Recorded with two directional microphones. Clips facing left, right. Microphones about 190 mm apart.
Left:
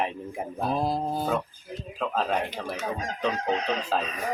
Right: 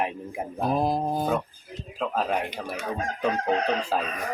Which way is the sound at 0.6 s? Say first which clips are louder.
Right 2 dB; 15° right (ahead or behind).